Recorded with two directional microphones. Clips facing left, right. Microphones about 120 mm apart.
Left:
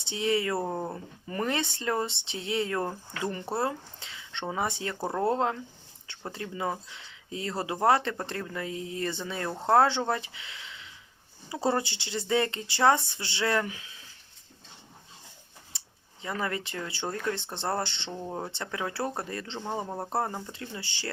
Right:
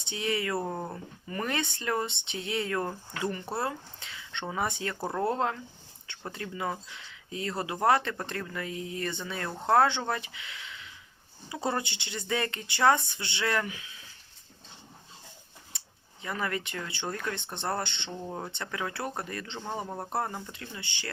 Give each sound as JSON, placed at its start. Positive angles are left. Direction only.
{"t": 0.0, "sound": "speech", "side_deg": 25}
{"t": 4.9, "sound": "speech", "side_deg": 15}
{"t": 15.7, "sound": "a sound", "side_deg": 30}
{"t": 16.2, "sound": "speech", "side_deg": 25}
{"t": 18.3, "sound": "speech", "side_deg": 10}
{"t": 18.5, "sound": "speech", "side_deg": 25}
{"t": 19.5, "sound": "speech", "side_deg": 15}